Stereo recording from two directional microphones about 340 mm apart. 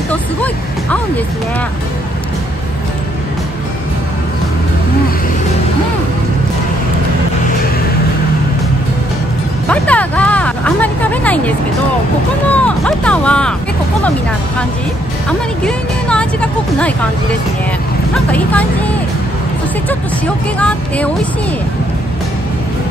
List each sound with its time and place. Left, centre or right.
9.7 s a sound: centre
12.5 s speech: centre
15.2 s speech: centre
18.3 s speech: centre
20.5 s speech: centre